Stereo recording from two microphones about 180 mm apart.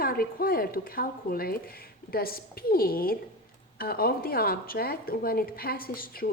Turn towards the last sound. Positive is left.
turn(degrees=55)  # may be behind; listen again after turning